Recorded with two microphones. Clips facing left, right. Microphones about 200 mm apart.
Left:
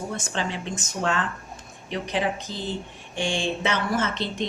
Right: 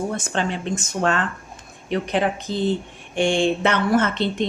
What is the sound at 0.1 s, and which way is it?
Speech, 55° right (ahead or behind).